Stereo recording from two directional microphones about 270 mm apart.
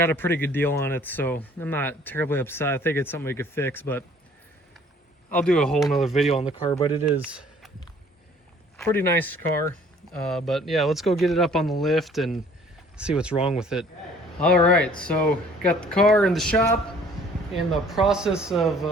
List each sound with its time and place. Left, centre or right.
0.0 s speech: centre
5.3 s speech: centre
6.7 s speech: centre
8.8 s speech: centre
17.8 s speech: centre